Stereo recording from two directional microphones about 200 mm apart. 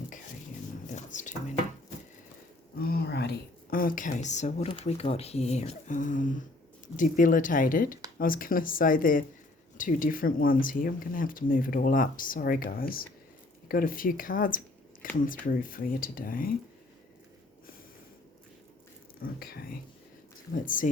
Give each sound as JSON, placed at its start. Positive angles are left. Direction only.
{"t": 0.9, "sound": "music", "side_deg": 40}
{"t": 2.7, "sound": "a woman's voice", "side_deg": 50}
{"t": 19.4, "sound": "speech", "side_deg": 50}